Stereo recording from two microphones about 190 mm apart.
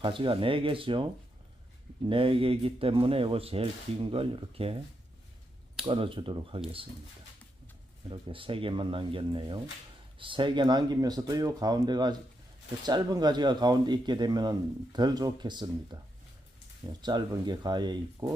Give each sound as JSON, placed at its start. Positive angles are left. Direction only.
{"t": 0.0, "sound": "speech", "side_deg": -25}
{"t": 2.0, "sound": "speech", "side_deg": -30}
{"t": 5.8, "sound": "speech", "side_deg": -25}
{"t": 8.1, "sound": "speech", "side_deg": -25}
{"t": 17.0, "sound": "speech", "side_deg": -20}